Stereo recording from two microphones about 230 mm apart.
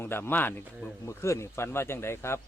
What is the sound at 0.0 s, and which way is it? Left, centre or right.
Speech, centre.